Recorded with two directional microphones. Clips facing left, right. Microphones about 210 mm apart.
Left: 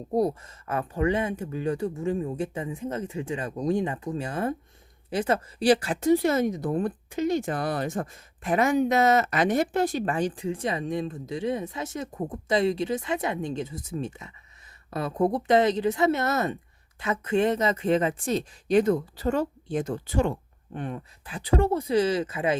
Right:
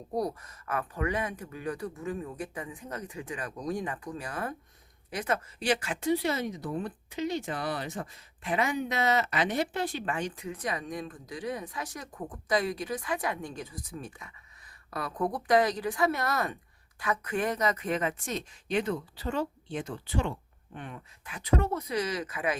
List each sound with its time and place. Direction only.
0.1 s speech: 25° left (ahead or behind)